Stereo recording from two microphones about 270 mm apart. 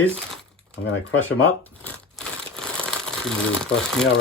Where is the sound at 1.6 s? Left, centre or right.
Centre.